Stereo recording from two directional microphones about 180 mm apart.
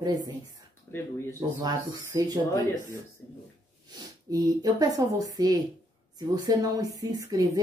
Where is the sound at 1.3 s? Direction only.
20° right (ahead or behind).